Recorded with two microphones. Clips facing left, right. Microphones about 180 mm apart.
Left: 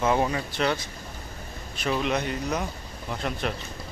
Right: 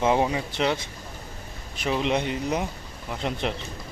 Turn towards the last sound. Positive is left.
turn(degrees=-20)  # may be behind; listen again after turning